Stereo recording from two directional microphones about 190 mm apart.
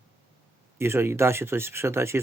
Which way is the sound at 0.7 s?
15° right (ahead or behind).